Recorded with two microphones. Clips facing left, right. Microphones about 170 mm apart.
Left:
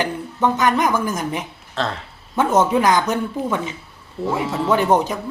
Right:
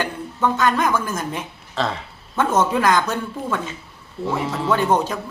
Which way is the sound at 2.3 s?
15° left (ahead or behind).